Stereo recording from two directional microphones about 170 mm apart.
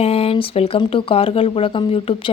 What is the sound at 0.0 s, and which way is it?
Speech, 35° left (ahead or behind).